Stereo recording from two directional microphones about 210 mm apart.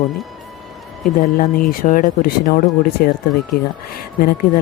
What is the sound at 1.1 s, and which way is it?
A man's voice, 40° left (ahead or behind).